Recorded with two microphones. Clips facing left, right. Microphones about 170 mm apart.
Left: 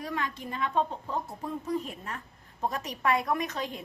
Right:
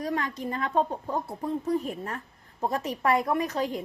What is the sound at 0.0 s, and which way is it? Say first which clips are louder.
A woman's voice: right 4 dB; 40° right (ahead or behind).